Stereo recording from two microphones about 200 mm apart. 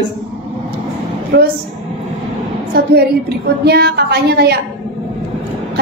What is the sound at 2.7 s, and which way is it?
A woman's voice, 55° right (ahead or behind).